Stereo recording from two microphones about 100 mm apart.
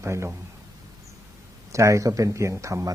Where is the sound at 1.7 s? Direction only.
30° right (ahead or behind).